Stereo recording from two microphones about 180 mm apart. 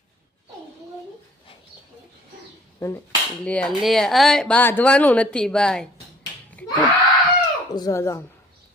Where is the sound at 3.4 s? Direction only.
5° left (ahead or behind).